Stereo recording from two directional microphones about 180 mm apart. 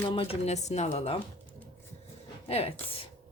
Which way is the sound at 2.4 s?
35° left (ahead or behind).